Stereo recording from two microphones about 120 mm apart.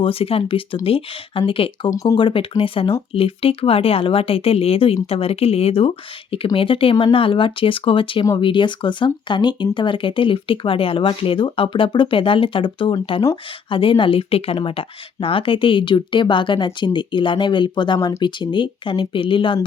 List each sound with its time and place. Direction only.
0.0 s speech: 50° left (ahead or behind)